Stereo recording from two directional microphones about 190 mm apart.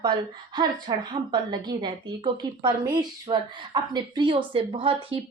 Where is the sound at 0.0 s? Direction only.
25° right (ahead or behind).